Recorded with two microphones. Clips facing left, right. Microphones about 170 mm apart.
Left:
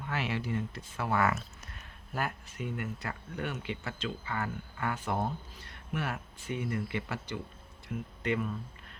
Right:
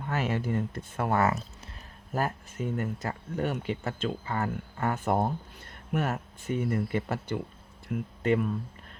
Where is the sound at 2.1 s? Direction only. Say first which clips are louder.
Right 5 dB; 40° right (ahead or behind).